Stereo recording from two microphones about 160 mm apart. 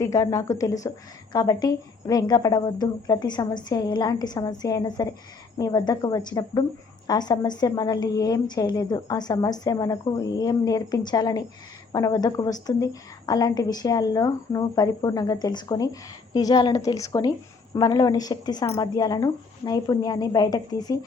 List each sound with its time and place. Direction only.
0.0 s a woman's voice: 20° left (ahead or behind)